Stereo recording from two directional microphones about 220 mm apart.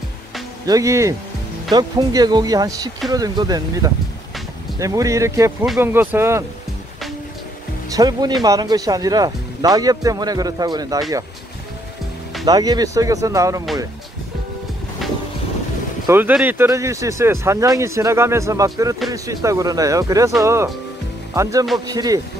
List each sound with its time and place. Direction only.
0.7 s speech: 15° right (ahead or behind)
7.9 s speech: 15° right (ahead or behind)
12.4 s speech: 20° right (ahead or behind)
16.1 s speech: 10° right (ahead or behind)